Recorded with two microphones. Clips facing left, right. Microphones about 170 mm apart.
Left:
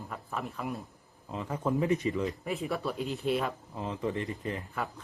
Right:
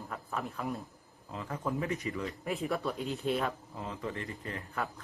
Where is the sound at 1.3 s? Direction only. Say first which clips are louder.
Left 4 dB; 20° left (ahead or behind).